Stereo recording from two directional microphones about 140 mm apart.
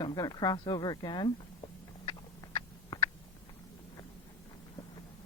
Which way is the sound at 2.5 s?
35° left (ahead or behind).